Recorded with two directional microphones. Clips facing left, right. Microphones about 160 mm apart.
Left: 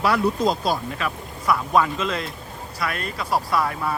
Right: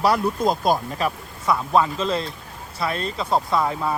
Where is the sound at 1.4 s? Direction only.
25° right (ahead or behind).